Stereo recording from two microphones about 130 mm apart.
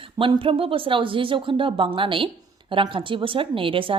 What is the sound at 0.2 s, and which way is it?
Speech, 40° right (ahead or behind).